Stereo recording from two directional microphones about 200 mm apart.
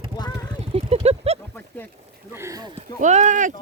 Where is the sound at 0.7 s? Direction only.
30° right (ahead or behind).